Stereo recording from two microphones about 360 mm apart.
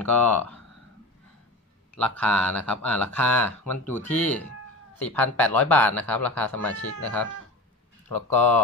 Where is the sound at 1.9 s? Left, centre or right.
Centre.